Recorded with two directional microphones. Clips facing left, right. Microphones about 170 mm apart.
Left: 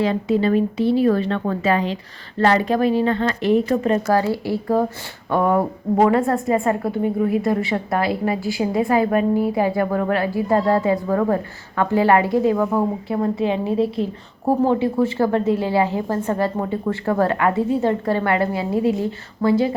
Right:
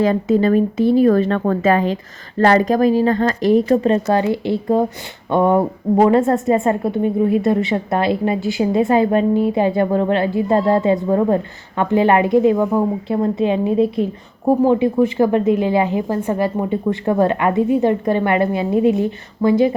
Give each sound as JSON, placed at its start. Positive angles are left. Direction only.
{"t": 0.0, "sound": "a woman's voice", "side_deg": -45}